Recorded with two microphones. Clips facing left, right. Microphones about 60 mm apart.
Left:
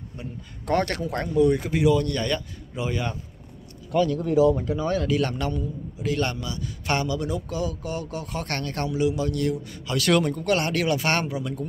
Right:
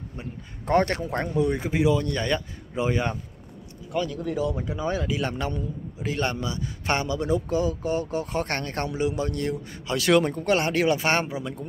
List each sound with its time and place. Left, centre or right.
0.2 s a man's voice: right
3.9 s speech: centre
4.2 s speech: centre
4.5 s speech: centre
5.5 s a man's voice: right